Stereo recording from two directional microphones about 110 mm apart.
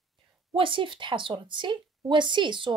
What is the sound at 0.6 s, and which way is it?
A woman's voice, 50° right (ahead or behind).